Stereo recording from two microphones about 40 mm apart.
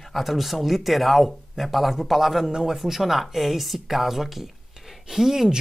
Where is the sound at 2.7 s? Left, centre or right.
Centre.